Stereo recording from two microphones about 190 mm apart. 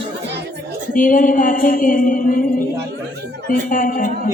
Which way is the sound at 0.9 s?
45° left (ahead or behind).